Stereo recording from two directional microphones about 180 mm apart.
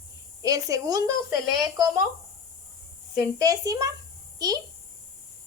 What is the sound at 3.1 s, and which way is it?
A woman's voice, 20° right (ahead or behind).